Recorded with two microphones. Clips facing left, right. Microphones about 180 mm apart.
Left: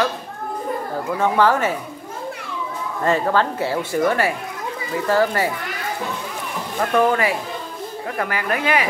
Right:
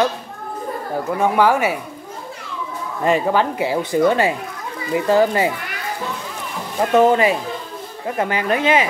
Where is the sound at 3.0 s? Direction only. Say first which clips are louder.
Right 2 dB; 15° right (ahead or behind).